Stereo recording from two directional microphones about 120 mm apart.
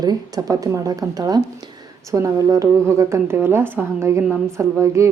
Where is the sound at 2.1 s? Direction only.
25° right (ahead or behind).